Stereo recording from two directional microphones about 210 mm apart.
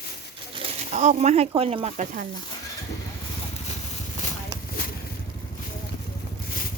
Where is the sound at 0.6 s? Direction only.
30° right (ahead or behind).